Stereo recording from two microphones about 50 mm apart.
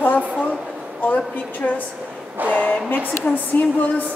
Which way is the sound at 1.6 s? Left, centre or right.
Left.